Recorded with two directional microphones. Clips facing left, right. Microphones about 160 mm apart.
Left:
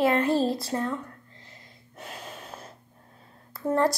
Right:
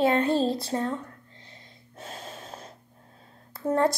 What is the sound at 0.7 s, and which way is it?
Speech, 30° right (ahead or behind).